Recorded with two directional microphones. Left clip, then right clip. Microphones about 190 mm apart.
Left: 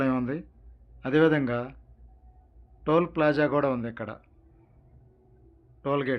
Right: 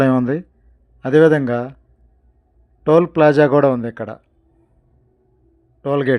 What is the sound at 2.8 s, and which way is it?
Speech, 45° right (ahead or behind).